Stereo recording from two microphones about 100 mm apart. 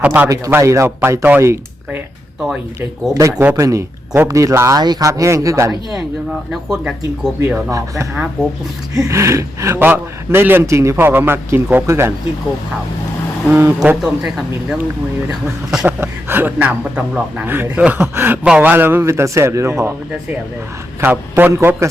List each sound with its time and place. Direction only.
0.0 s speech: 15° right (ahead or behind)
0.5 s speech: 30° right (ahead or behind)
3.2 s speech: 35° right (ahead or behind)
4.8 s speech: 45° right (ahead or behind)
5.0 s speech: 30° right (ahead or behind)
6.5 s speech: 5° right (ahead or behind)
7.7 s speech: 35° right (ahead or behind)
8.1 s speech: 10° right (ahead or behind)
9.0 s speech: 30° right (ahead or behind)
13.5 s speech: 25° right (ahead or behind)
14.0 s speech: centre (ahead or behind)
15.9 s speech: 20° right (ahead or behind)
21.0 s speech: 20° right (ahead or behind)